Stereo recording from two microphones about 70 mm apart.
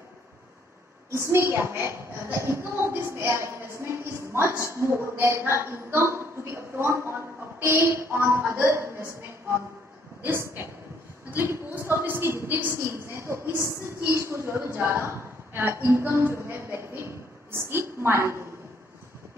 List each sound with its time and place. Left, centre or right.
1.1 s a woman's voice: right
10.2 s a woman's voice: right